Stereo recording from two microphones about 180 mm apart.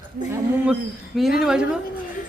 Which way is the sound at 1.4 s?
5° right (ahead or behind).